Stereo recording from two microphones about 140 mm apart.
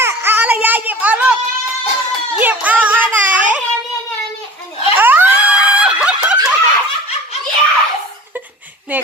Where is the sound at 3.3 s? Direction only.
65° right (ahead or behind).